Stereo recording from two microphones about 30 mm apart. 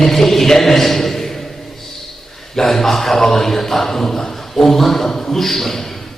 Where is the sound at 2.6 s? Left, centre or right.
Centre.